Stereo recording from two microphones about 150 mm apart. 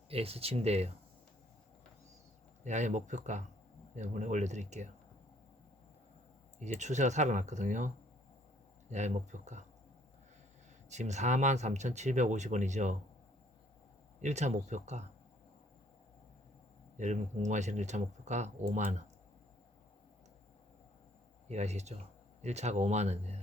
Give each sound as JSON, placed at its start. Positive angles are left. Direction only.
{"t": 0.1, "sound": "speech", "side_deg": -40}
{"t": 2.6, "sound": "speech", "side_deg": -55}
{"t": 6.6, "sound": "speech", "side_deg": -50}
{"t": 8.9, "sound": "speech", "side_deg": -50}
{"t": 10.8, "sound": "speech", "side_deg": -50}
{"t": 14.2, "sound": "speech", "side_deg": -50}
{"t": 17.0, "sound": "speech", "side_deg": -50}
{"t": 21.5, "sound": "speech", "side_deg": -50}